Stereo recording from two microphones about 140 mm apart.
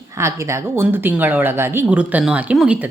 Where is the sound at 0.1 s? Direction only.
20° right (ahead or behind).